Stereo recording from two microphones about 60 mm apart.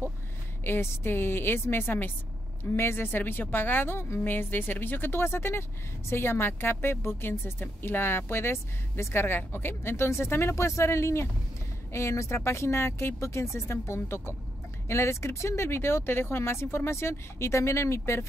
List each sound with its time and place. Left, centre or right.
0.7 s a woman's voice: left